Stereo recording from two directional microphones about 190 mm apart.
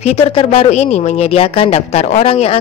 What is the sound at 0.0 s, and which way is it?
Speech, 30° left (ahead or behind).